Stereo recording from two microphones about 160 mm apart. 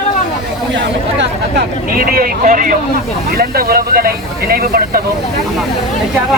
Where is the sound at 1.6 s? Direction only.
65° right (ahead or behind).